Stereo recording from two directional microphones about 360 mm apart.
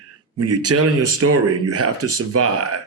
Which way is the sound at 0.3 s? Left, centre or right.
Right.